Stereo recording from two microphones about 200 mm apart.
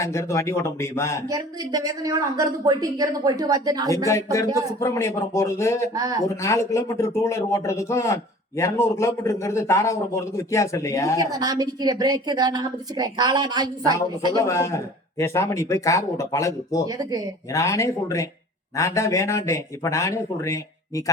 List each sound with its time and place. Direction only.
0.0 s speech: 15° left (ahead or behind)
1.3 s speech: 15° right (ahead or behind)
3.8 s speech: 15° left (ahead or behind)
5.9 s speech: 20° right (ahead or behind)
6.2 s speech: 15° left (ahead or behind)
11.2 s a woman's voice: 20° right (ahead or behind)
14.4 s speech: 15° left (ahead or behind)
16.8 s a woman's voice: 20° right (ahead or behind)
17.5 s speech: 15° left (ahead or behind)